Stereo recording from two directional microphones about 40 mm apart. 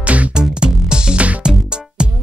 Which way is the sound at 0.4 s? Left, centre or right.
Right.